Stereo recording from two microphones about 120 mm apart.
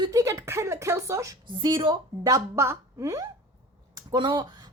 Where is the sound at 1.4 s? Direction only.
40° right (ahead or behind).